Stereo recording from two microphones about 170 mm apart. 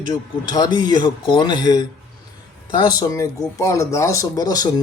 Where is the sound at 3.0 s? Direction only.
20° left (ahead or behind).